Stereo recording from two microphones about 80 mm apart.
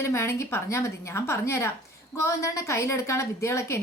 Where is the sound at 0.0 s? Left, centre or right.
Left.